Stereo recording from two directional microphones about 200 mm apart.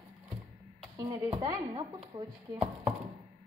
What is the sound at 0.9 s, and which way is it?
Speech, 20° right (ahead or behind).